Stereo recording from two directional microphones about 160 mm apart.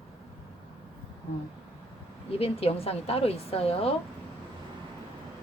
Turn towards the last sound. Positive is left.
turn(degrees=40)  # may be behind; listen again after turning